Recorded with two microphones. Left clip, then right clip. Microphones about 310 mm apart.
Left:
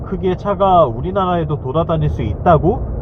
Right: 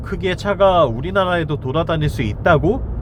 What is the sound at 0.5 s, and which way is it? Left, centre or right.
Speech, right.